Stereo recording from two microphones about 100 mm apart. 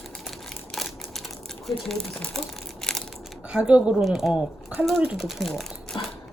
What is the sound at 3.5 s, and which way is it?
A woman's voice, 10° right (ahead or behind).